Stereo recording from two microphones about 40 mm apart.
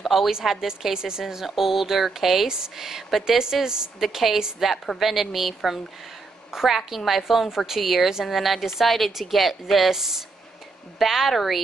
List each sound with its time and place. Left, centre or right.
0.0 s a sound: centre
0.3 s a woman's voice: centre
1.2 s speech: centre
2.4 s a woman's voice: centre
3.6 s a woman's voice: centre
4.0 s a woman's voice: centre